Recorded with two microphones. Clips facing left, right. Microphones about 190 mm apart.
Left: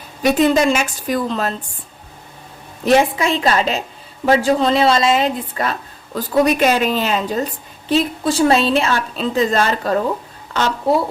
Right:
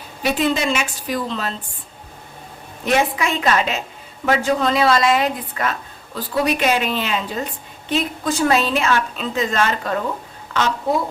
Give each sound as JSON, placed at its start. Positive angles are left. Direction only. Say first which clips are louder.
{"t": 0.2, "sound": "a woman's voice", "louder": "left 6 dB", "side_deg": 45}
{"t": 2.8, "sound": "a woman's voice", "louder": "left 5 dB", "side_deg": 35}
{"t": 6.1, "sound": "a woman's voice", "louder": "left 5 dB", "side_deg": 45}